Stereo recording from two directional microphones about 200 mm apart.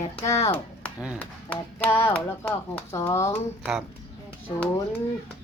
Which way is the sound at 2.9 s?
15° left (ahead or behind).